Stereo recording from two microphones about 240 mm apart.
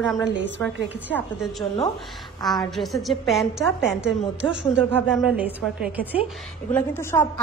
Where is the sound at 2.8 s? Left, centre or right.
Centre.